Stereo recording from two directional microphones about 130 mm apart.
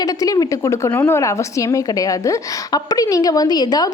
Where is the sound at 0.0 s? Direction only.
25° left (ahead or behind).